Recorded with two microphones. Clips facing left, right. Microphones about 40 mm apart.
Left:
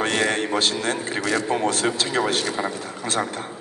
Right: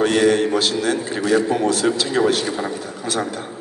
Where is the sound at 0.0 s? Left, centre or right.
Left.